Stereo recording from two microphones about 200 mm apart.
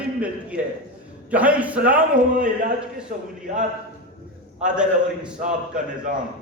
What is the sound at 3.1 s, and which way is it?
Speech, 40° right (ahead or behind).